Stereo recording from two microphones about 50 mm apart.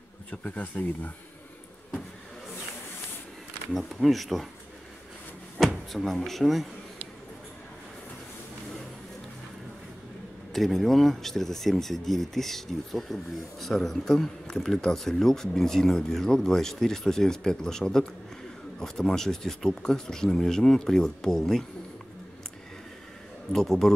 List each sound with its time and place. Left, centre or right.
0.3 s speech: left
3.7 s speech: centre
5.9 s speech: centre
10.5 s speech: centre
23.5 s speech: centre